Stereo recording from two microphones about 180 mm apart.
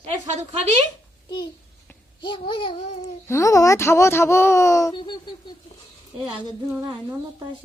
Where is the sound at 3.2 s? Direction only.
15° left (ahead or behind).